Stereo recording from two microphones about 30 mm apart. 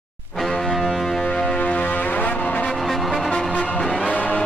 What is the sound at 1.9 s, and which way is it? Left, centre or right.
Foghorn, left.